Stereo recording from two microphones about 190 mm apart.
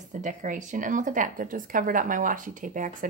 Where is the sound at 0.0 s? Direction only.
40° right (ahead or behind).